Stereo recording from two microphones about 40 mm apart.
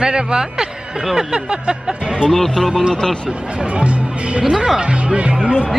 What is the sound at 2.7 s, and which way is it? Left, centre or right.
Speech, centre.